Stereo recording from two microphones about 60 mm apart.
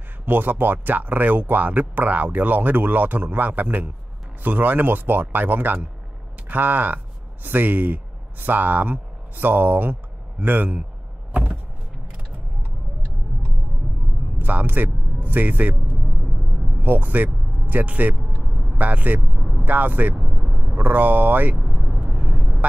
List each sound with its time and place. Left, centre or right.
0.2 s speech: right
14.4 s speech: right
22.0 s vehicle: right